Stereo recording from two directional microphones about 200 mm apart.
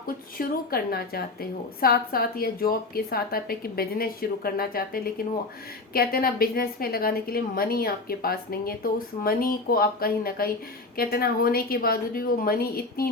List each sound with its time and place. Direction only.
0.3 s a woman's voice: 50° left (ahead or behind)